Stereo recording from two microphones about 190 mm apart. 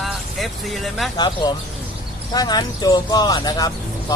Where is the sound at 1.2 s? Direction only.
20° left (ahead or behind).